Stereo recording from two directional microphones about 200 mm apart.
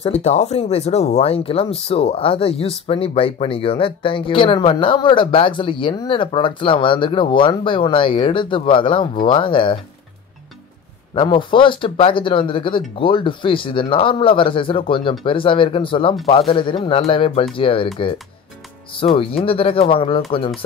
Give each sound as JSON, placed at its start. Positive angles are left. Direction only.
{"t": 0.0, "sound": "speech", "side_deg": 35}
{"t": 11.1, "sound": "speech", "side_deg": 25}
{"t": 18.9, "sound": "speech", "side_deg": 30}